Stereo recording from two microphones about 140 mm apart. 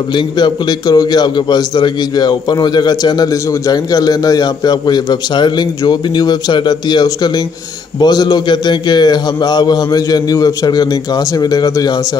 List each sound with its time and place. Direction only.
0.1 s a man's voice: 30° left (ahead or behind)